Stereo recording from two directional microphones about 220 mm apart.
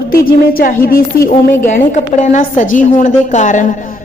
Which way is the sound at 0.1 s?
40° left (ahead or behind).